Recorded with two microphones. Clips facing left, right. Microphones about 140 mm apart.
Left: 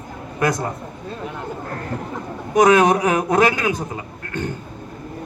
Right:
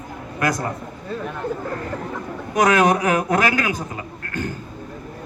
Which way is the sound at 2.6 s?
20° left (ahead or behind).